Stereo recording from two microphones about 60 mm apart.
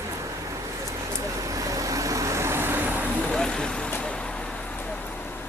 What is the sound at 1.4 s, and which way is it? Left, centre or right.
Vehicle, right.